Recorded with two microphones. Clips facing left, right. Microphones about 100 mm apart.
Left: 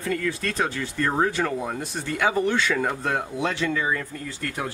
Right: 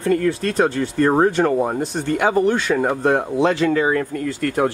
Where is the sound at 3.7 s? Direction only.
55° right (ahead or behind).